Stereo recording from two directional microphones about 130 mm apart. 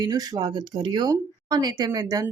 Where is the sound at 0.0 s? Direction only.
30° right (ahead or behind).